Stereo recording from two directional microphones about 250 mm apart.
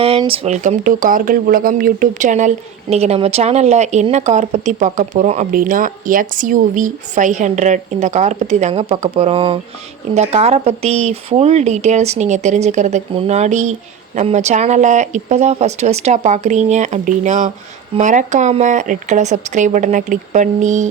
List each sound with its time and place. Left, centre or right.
0.0 s speech: right